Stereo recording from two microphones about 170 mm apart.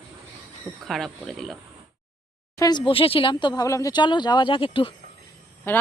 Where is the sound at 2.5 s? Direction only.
25° left (ahead or behind).